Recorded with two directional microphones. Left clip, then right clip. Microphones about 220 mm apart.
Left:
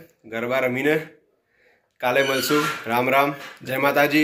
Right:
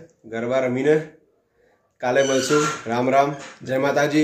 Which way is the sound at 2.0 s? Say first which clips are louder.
Right 1 dB; 10° right (ahead or behind).